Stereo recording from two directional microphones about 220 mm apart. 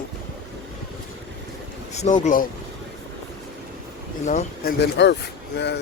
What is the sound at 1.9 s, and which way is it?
Speech, 30° left (ahead or behind).